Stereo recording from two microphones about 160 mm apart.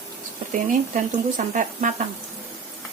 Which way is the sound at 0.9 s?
55° right (ahead or behind).